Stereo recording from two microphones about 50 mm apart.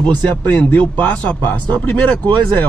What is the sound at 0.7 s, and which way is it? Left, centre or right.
Speech, left.